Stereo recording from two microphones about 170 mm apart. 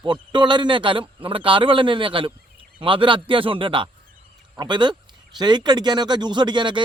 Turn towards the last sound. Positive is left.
turn(degrees=-25)  # may be behind; listen again after turning